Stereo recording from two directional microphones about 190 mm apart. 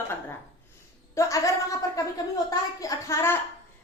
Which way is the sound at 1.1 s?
15° left (ahead or behind).